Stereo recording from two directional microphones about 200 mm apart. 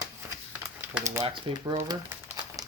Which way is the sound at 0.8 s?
10° right (ahead or behind).